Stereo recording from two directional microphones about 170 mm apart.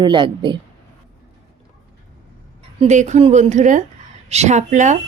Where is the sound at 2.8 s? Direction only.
45° right (ahead or behind).